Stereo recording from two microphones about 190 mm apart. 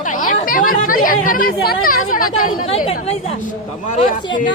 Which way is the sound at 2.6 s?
30° left (ahead or behind).